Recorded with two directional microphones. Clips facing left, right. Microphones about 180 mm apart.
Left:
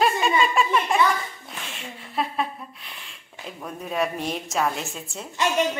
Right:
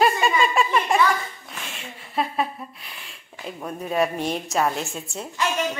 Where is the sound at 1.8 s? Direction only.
Centre (ahead or behind).